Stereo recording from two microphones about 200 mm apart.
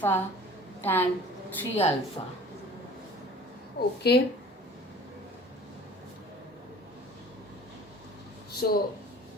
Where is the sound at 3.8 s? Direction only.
50° left (ahead or behind).